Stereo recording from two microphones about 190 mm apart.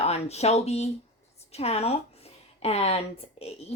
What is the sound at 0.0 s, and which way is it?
Speech, 35° left (ahead or behind).